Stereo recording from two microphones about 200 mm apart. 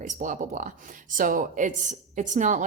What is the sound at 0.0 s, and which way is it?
A woman's voice, 40° right (ahead or behind).